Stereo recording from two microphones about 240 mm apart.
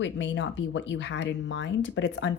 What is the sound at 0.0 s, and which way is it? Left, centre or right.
Speech, left.